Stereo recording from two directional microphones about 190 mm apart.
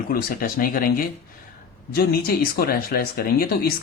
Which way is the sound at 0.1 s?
50° left (ahead or behind).